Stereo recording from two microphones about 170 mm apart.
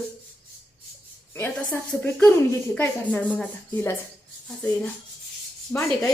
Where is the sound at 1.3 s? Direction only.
10° left (ahead or behind).